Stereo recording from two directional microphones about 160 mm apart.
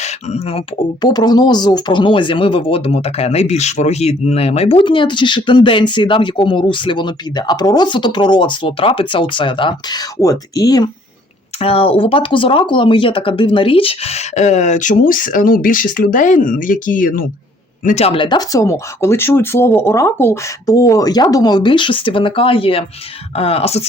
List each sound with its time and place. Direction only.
0.0 s speech: 40° left (ahead or behind)
1.0 s speech: 25° left (ahead or behind)
11.6 s speech: 35° left (ahead or behind); by 17.2 s 60° left (ahead or behind)
17.8 s speech: 40° left (ahead or behind)